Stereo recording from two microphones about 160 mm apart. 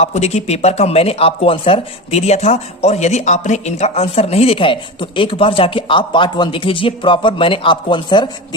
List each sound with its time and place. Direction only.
0.0 s speech: 40° left (ahead or behind)